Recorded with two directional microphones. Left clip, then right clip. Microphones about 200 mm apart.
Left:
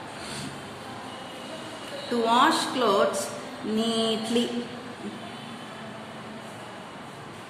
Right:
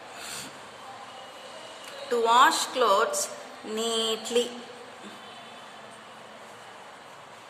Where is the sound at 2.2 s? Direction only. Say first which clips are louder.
Right 1 dB; 40° right (ahead or behind).